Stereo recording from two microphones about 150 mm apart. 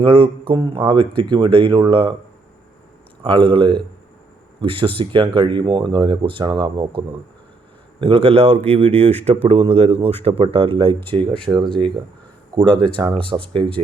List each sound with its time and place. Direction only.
0.0 s speech: 35° right (ahead or behind)
3.2 s speech: 35° right (ahead or behind)
8.0 s a man's voice: 40° right (ahead or behind)